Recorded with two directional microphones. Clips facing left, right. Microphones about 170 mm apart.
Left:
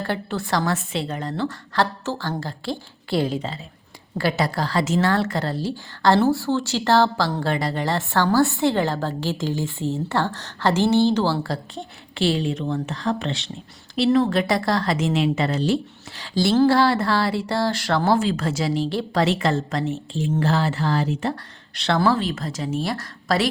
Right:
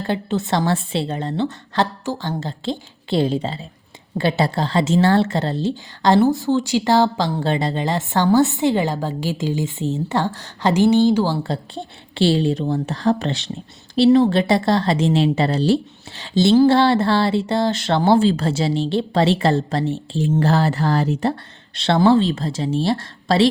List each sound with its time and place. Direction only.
0.0 s speech: 20° right (ahead or behind)
11.4 s a woman's voice: 30° right (ahead or behind)
21.8 s speech: 25° right (ahead or behind)